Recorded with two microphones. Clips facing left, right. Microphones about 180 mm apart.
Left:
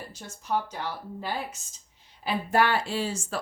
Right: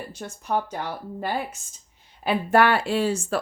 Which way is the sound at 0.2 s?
55° right (ahead or behind).